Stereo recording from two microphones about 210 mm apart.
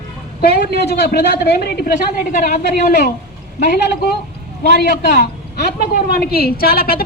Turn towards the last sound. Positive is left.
turn(degrees=45)  # may be behind; listen again after turning